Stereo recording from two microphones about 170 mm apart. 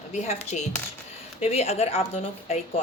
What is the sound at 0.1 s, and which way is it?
A woman's voice, 40° left (ahead or behind).